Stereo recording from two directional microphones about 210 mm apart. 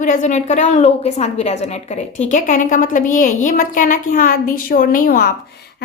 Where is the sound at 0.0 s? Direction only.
35° left (ahead or behind).